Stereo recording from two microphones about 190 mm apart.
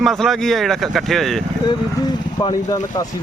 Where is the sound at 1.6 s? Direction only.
20° left (ahead or behind).